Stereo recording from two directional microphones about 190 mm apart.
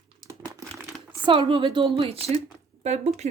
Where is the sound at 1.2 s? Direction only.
25° right (ahead or behind).